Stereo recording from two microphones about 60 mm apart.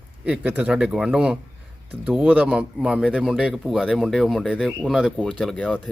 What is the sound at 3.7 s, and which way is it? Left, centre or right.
Speech, centre.